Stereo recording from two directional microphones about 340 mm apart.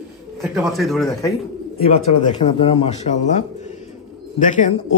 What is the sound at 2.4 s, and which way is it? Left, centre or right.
Speech, centre.